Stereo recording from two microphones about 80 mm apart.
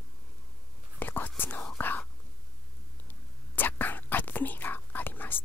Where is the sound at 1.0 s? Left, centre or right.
Left.